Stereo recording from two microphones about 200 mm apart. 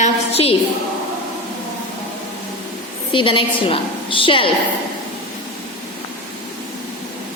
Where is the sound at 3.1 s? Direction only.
25° left (ahead or behind).